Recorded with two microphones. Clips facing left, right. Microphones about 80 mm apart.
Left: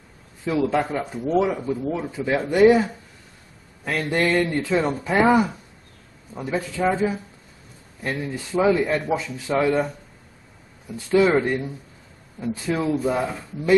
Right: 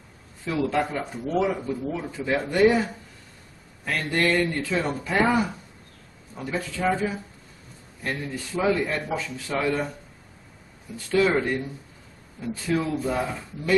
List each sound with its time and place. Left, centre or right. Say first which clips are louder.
0.5 s speech: left 3 dB; centre
8.0 s speech: left 3 dB; centre
11.1 s speech: left 4 dB; centre